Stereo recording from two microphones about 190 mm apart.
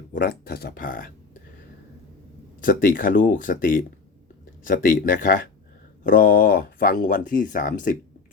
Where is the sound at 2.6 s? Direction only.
50° left (ahead or behind).